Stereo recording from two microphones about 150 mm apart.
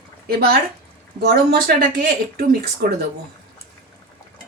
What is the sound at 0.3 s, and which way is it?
Speech, 90° right.